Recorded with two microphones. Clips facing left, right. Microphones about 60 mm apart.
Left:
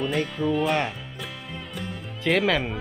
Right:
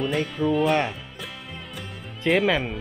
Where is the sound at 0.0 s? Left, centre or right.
Centre.